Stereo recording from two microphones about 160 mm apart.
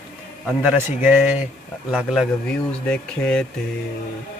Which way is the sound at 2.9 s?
5° left (ahead or behind).